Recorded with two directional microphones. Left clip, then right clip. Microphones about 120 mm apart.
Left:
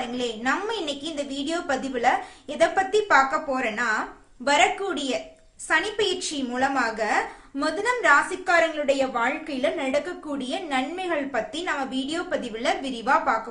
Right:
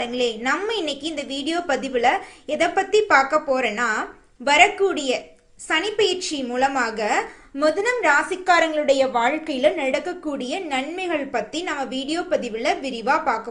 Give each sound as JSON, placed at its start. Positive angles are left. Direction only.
{"t": 0.0, "sound": "a woman's voice", "side_deg": -25}